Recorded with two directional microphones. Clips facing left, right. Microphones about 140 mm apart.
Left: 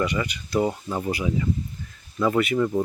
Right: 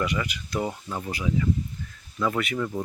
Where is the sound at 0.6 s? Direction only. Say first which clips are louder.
Left 6 dB; 15° left (ahead or behind).